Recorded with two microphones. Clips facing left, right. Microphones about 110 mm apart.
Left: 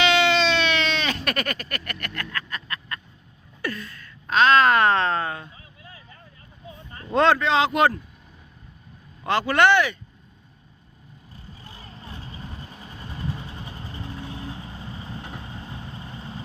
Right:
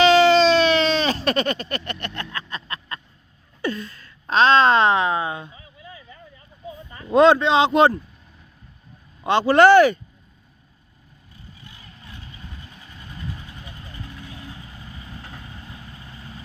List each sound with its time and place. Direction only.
0.0 s a sound: 40° right (ahead or behind)
3.6 s a woman's voice: 30° right (ahead or behind)
7.1 s a woman's voice: 20° right (ahead or behind)
9.2 s speech: 25° right (ahead or behind)
11.6 s vehicle: 35° left (ahead or behind)